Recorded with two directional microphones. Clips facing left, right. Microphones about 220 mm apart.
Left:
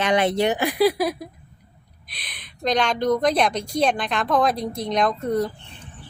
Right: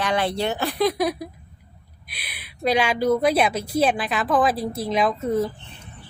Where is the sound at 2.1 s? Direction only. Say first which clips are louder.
Right 1 dB; 10° right (ahead or behind).